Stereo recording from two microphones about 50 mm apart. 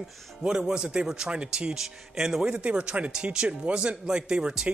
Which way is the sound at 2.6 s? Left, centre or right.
Right.